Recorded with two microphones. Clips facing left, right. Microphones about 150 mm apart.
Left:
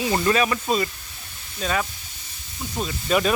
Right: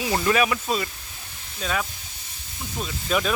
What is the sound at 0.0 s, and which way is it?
Speech, 5° right (ahead or behind).